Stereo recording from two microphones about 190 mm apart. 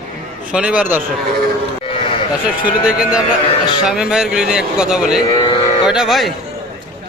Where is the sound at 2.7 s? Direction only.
5° right (ahead or behind).